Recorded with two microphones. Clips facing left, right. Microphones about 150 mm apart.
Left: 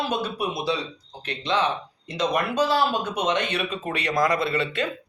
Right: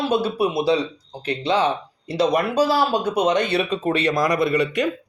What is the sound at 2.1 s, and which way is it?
Speech, 35° right (ahead or behind).